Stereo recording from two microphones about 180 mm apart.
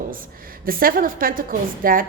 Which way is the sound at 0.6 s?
55° right (ahead or behind).